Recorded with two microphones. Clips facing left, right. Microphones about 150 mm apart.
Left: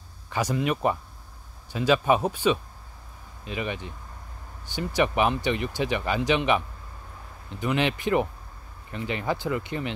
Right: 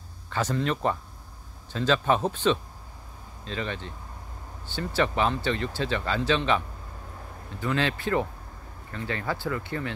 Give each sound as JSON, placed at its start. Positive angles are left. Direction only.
{"t": 0.3, "sound": "speech", "side_deg": 10}